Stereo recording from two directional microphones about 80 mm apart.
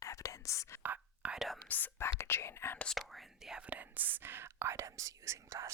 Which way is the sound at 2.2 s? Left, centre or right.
Left.